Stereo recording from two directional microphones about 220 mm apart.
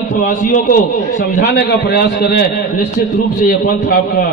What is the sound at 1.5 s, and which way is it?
Speech, 45° left (ahead or behind).